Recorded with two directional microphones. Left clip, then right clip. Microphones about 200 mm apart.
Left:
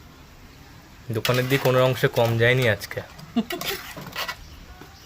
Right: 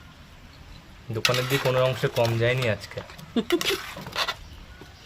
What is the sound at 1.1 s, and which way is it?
Speech, 25° left (ahead or behind).